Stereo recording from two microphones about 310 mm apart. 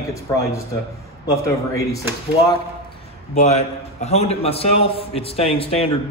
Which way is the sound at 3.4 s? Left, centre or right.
Left.